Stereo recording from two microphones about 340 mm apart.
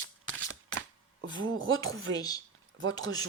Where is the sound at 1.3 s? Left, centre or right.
Right.